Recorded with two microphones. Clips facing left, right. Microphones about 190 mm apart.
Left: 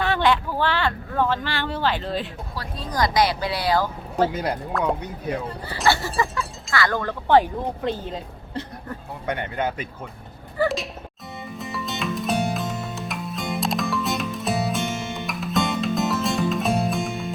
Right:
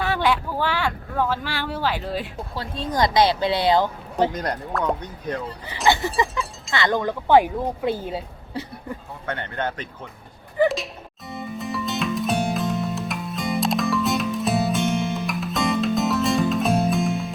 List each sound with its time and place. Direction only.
0.0 s speech: 10° right (ahead or behind)
2.6 s speech: 25° right (ahead or behind)
4.3 s speech: 5° left (ahead or behind)
5.6 s speech: 20° right (ahead or behind)
9.2 s speech: 15° left (ahead or behind)
10.6 s music: 20° right (ahead or behind)
11.3 s music: centre (ahead or behind)